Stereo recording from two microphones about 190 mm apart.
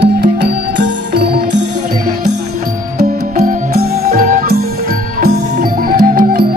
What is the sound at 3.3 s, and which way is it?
Music, 40° right (ahead or behind).